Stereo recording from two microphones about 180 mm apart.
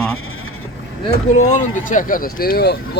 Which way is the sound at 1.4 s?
45° left (ahead or behind).